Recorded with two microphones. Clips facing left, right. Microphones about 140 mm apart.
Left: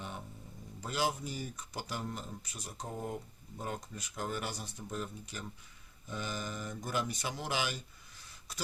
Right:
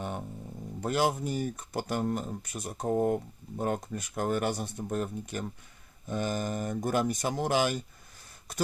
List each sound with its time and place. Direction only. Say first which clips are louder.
0.8 s speech: right 7 dB; 55° right (ahead or behind)